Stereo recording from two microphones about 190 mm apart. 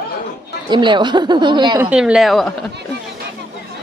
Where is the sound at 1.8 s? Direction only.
5° right (ahead or behind).